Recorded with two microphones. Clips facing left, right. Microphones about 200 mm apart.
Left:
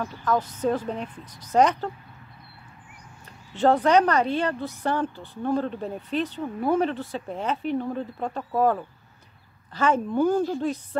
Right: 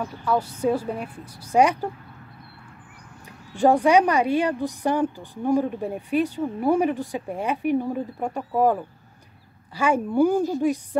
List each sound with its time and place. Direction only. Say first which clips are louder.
0.0 s a woman's voice: right 1 dB; 10° right (ahead or behind)
3.5 s a woman's voice: right 2 dB; 10° right (ahead or behind)